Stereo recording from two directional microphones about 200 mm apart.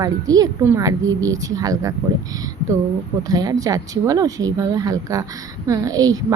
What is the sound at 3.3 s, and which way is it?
Speech, 20° right (ahead or behind).